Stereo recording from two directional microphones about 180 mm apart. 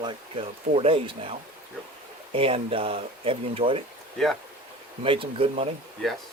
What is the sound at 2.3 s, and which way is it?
Speech, 30° right (ahead or behind).